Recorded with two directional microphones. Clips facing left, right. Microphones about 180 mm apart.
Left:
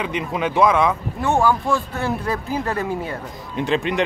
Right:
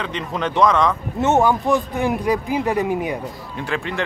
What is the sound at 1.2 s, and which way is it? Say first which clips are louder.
A man's voice: right 2 dB; 20° right (ahead or behind).